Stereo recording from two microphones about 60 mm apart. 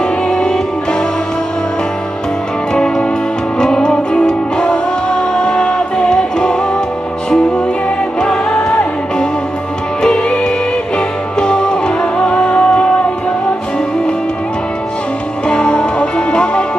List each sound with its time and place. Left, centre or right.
0.0 s music: centre
2.7 s music: centre
10.0 s music: centre
15.4 s music: centre